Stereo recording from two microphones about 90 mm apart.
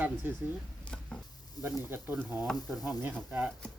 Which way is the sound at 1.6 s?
20° right (ahead or behind).